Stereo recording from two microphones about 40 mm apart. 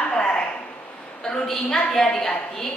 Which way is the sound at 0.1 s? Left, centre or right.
Left.